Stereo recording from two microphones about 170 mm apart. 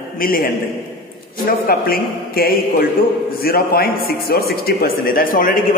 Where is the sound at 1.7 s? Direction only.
60° left (ahead or behind).